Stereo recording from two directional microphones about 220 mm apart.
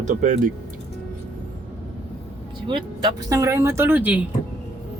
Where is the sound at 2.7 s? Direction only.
15° right (ahead or behind).